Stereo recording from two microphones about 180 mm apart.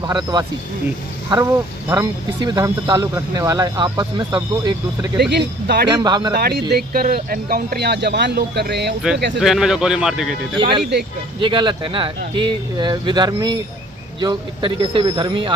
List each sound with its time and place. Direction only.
0.0 s speech: 20° right (ahead or behind)
5.3 s speech: 70° right (ahead or behind)
5.9 s speech: 20° right (ahead or behind)
6.3 s speech: 65° right (ahead or behind)
9.4 s speech: centre (ahead or behind)
10.6 s speech: 30° right (ahead or behind)